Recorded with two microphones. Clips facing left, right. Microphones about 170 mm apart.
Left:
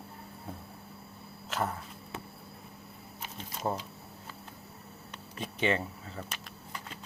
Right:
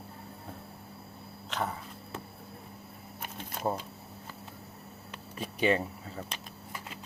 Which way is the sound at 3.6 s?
55° right (ahead or behind).